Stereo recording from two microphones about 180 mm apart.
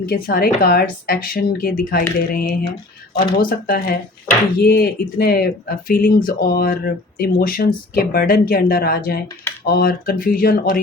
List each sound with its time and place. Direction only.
0.0 s speech: 55° left (ahead or behind)